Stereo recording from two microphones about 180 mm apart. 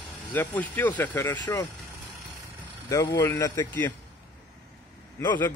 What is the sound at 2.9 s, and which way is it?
Speech, 15° left (ahead or behind).